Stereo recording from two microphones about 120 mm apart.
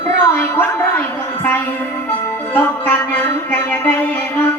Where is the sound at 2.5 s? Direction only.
15° left (ahead or behind).